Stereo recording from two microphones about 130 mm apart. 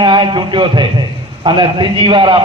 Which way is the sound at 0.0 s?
40° right (ahead or behind).